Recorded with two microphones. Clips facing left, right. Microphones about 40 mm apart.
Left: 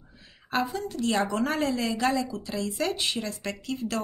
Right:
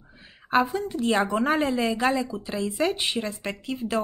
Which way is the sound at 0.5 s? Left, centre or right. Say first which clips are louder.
Right 5 dB; right.